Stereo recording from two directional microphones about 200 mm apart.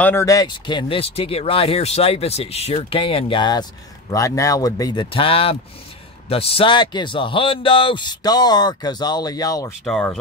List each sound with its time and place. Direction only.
0.0 s speech: 15° left (ahead or behind)
9.8 s speech: 5° left (ahead or behind)